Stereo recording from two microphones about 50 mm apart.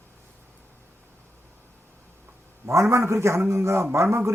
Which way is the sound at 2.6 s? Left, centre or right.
Right.